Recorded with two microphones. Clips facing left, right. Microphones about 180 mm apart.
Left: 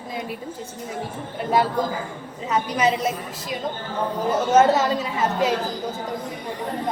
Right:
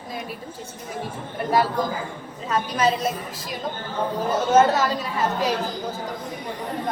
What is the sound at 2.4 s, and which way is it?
A woman's voice, 20° left (ahead or behind).